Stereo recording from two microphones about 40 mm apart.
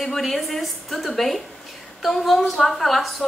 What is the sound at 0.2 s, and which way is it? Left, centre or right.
A woman's voice, centre.